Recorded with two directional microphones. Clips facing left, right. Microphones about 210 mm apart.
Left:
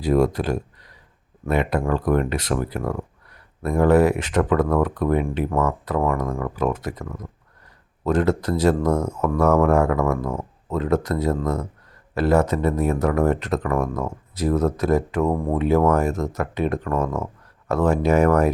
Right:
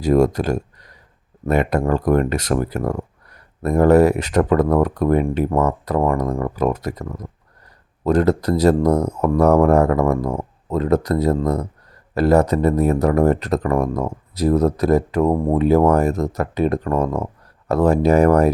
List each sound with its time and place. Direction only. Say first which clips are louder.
0.0 s speech: right 3 dB; 45° right (ahead or behind)